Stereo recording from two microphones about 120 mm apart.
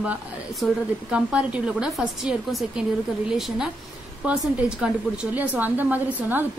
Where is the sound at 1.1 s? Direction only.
10° right (ahead or behind).